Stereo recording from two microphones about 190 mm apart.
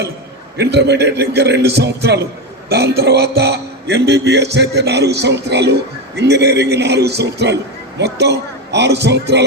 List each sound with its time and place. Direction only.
0.5 s a man's voice: 65° right (ahead or behind)